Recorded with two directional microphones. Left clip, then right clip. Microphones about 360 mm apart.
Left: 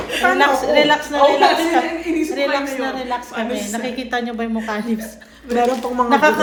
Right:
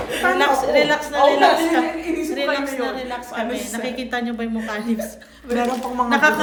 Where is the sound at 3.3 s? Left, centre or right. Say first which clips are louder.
Left 2 dB; centre.